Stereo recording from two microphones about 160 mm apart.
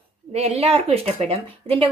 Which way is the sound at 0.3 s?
40° right (ahead or behind).